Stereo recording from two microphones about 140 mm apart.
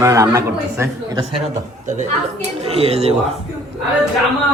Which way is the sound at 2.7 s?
45° right (ahead or behind).